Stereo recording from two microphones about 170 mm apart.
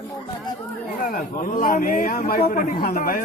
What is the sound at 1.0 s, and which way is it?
A man's voice, 55° left (ahead or behind).